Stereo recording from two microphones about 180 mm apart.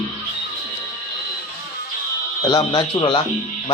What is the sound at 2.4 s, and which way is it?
Speech, 25° left (ahead or behind).